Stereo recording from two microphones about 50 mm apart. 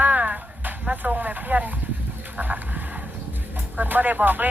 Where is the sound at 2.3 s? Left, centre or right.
Right.